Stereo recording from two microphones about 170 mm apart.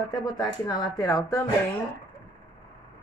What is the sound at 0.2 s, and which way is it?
Speech, 25° left (ahead or behind).